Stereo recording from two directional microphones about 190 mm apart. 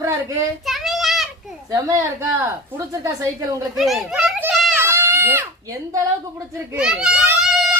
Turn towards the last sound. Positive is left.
turn(degrees=-5)  # may be behind; listen again after turning